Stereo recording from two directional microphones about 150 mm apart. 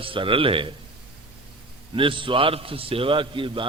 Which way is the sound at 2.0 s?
35° right (ahead or behind).